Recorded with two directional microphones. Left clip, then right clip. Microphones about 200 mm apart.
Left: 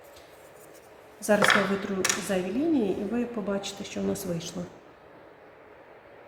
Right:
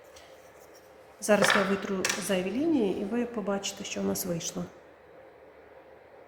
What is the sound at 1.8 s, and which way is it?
Speech, 25° right (ahead or behind).